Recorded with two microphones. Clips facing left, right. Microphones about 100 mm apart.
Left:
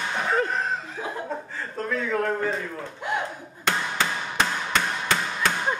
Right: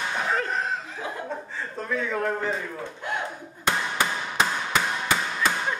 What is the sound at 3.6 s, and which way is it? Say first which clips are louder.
Hammer: even; 10° right (ahead or behind).